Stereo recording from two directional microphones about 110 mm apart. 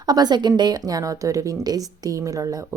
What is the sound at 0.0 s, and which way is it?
A woman's voice, 40° right (ahead or behind).